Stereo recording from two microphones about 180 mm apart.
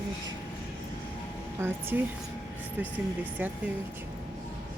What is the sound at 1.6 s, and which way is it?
Speech, 10° right (ahead or behind).